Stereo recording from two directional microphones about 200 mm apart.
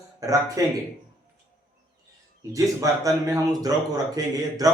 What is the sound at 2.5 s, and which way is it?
A man's voice, 15° right (ahead or behind).